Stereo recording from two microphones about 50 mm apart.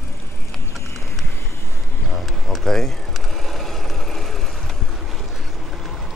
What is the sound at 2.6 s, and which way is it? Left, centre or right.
Vehicle, centre.